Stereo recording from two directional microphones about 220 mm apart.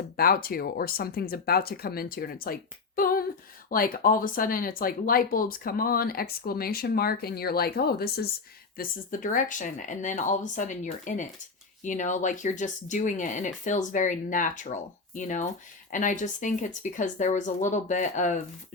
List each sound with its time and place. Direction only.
0.2 s speech: 40° left (ahead or behind)